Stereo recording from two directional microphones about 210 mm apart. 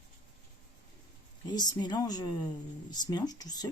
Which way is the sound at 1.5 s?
20° left (ahead or behind).